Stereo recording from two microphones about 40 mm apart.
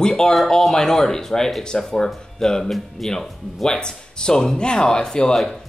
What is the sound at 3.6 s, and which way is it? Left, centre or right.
Speech, centre.